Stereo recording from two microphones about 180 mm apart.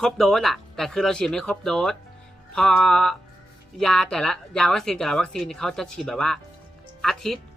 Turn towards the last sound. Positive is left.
turn(degrees=0)  # may be behind; listen again after turning